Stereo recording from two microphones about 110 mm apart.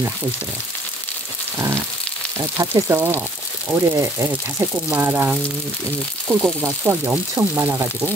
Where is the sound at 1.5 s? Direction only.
25° right (ahead or behind).